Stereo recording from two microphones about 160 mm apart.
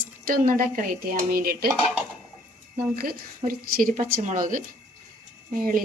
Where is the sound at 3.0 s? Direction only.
65° right (ahead or behind).